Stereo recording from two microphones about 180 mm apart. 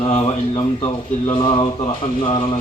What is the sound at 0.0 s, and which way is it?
Speech, 30° left (ahead or behind).